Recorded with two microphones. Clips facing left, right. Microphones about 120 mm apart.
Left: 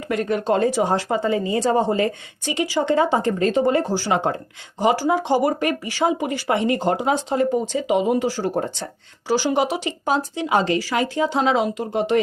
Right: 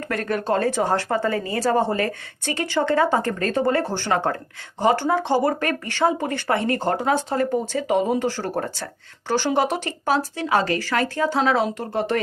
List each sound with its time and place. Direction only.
0.1 s a woman's voice: 20° left (ahead or behind)
9.2 s speech: 10° left (ahead or behind)